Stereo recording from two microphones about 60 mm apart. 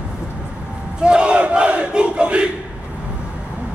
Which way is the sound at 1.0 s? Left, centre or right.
Centre.